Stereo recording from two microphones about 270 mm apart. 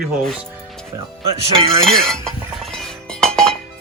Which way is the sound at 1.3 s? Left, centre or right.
Right.